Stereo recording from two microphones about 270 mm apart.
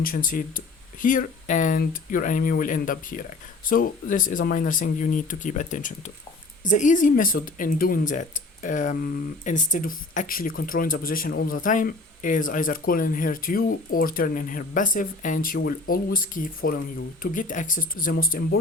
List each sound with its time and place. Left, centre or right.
0.0 s speech: left